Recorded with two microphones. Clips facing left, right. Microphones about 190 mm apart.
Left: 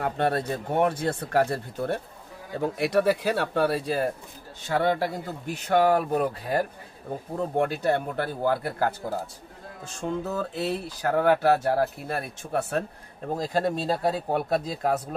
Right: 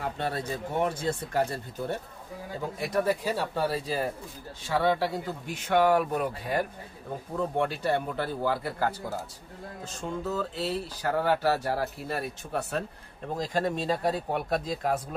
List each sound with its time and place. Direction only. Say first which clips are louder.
0.0 s speech: left 6 dB; 55° left (ahead or behind); by 6.6 s 40° left (ahead or behind)
7.5 s speech: left 4 dB; 50° left (ahead or behind)
10.0 s speech: left 3 dB; 55° left (ahead or behind)
13.4 s speech: left 2 dB; 35° left (ahead or behind)